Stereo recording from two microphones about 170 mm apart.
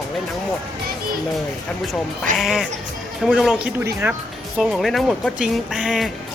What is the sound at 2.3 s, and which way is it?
Speech, centre (ahead or behind).